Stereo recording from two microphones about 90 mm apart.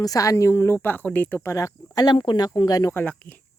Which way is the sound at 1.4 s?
35° left (ahead or behind).